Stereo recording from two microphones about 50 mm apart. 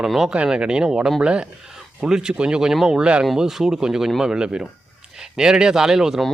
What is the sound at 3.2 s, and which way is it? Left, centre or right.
Speech, centre.